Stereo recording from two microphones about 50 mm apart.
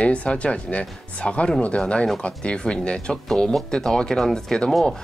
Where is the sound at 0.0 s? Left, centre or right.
Left; by 4.8 s centre.